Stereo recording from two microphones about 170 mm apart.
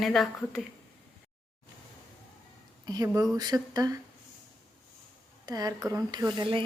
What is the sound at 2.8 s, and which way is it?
Speech, 25° right (ahead or behind).